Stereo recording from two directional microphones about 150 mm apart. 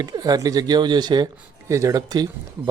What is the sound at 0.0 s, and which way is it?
Speech, 25° right (ahead or behind).